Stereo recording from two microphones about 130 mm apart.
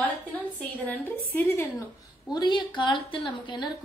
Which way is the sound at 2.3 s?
35° left (ahead or behind).